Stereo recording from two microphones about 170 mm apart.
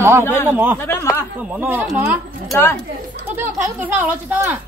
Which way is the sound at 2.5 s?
15° left (ahead or behind).